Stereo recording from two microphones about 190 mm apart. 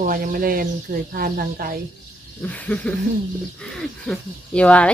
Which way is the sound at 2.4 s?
10° left (ahead or behind).